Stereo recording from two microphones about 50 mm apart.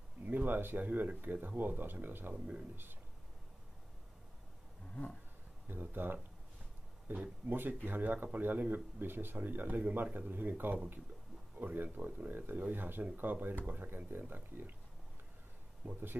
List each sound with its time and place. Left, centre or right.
0.2 s speech: right
2.3 s speech: right
2.7 s speech: right
5.7 s speech: right
15.8 s speech: right